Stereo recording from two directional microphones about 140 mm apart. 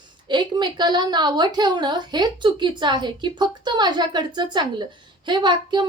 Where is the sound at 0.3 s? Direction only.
30° right (ahead or behind).